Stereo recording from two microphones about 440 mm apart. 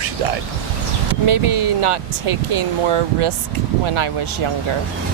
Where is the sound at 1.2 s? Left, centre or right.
Right.